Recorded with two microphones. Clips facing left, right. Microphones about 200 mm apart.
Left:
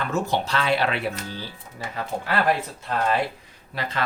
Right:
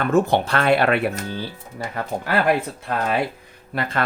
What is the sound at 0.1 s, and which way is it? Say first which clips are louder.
Speech: right 8 dB; 55° right (ahead or behind).